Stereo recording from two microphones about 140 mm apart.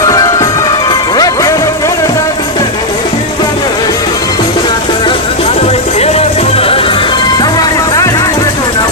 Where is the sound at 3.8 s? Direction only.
25° left (ahead or behind).